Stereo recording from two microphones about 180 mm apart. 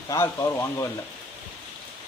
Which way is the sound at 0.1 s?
20° left (ahead or behind).